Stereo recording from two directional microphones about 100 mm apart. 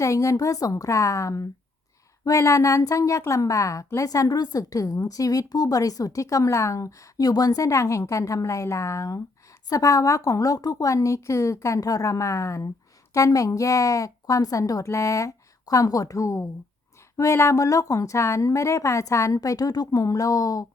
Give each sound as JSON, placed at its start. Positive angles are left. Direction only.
{"t": 0.0, "sound": "a woman's voice", "side_deg": 30}